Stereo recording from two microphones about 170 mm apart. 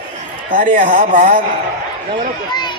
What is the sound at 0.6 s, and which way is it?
Speech, 55° right (ahead or behind).